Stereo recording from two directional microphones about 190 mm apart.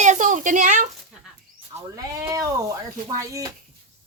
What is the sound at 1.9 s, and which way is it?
Speech, 20° right (ahead or behind).